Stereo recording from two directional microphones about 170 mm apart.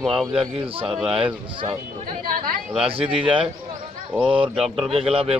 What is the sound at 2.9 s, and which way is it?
Speech, 30° right (ahead or behind).